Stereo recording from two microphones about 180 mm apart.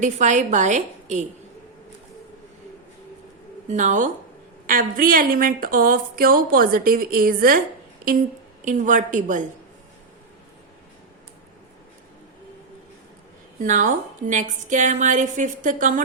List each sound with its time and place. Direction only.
0.0 s a woman's voice: 40° right (ahead or behind)
3.7 s a woman's voice: 45° right (ahead or behind)
13.6 s a woman's voice: 45° right (ahead or behind)